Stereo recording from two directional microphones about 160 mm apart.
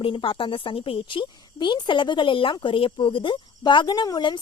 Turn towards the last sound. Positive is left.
turn(degrees=30)  # may be behind; listen again after turning